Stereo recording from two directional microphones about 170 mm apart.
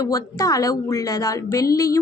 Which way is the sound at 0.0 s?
20° left (ahead or behind).